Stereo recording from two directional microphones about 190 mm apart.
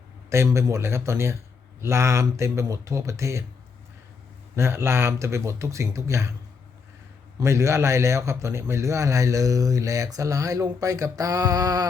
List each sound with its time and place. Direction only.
0.3 s a man's voice: 15° right (ahead or behind)
4.5 s a man's voice: 15° right (ahead or behind)
7.3 s a man's voice: 15° right (ahead or behind)